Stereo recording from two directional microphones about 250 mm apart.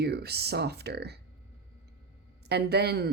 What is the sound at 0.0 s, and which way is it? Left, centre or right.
Speech, right.